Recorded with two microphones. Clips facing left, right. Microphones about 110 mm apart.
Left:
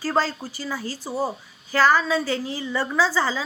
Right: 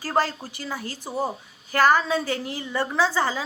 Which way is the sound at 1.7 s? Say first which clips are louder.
Even; 50° right (ahead or behind).